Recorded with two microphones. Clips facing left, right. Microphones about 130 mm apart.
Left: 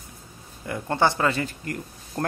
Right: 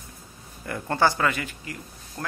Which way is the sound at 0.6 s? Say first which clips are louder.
Even; 20° left (ahead or behind).